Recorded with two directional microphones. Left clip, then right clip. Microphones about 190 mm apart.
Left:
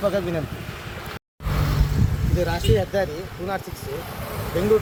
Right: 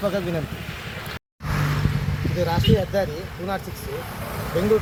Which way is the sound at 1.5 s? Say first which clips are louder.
Right 1 dB; 90° left.